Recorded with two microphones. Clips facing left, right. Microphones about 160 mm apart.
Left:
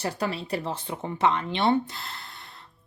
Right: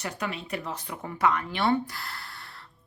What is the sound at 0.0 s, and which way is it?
Speech, 35° left (ahead or behind).